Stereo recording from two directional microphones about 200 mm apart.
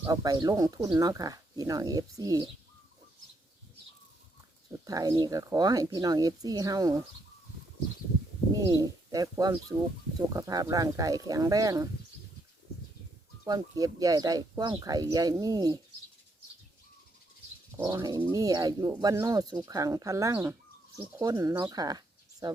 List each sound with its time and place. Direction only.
0.0 s speech: 15° right (ahead or behind)
4.9 s speech: 20° right (ahead or behind)
8.6 s speech: 15° right (ahead or behind)
13.4 s speech: 20° right (ahead or behind)
17.7 s speech: 15° right (ahead or behind)